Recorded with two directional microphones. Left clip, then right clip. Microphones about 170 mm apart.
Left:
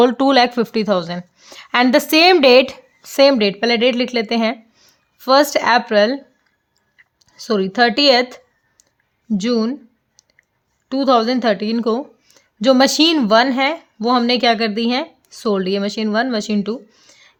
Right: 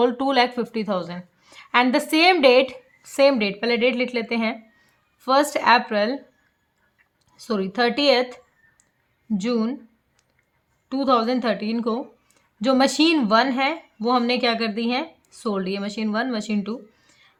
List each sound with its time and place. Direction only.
0.0 s a woman's voice: 55° left (ahead or behind)
7.3 s a woman's voice: 45° left (ahead or behind)
10.8 s a woman's voice: 50° left (ahead or behind)